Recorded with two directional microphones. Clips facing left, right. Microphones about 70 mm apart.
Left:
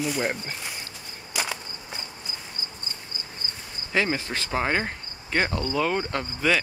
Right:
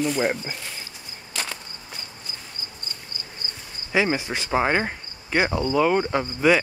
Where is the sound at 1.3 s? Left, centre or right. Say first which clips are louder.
Left 2 dB; centre.